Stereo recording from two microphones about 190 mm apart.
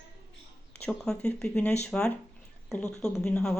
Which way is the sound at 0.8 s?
5° left (ahead or behind).